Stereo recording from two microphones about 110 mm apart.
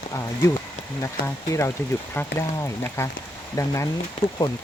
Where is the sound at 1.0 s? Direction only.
25° left (ahead or behind).